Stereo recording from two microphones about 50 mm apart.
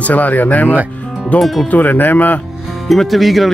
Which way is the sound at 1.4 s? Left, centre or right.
Centre.